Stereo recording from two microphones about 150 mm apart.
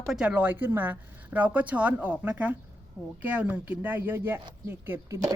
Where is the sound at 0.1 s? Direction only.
5° right (ahead or behind).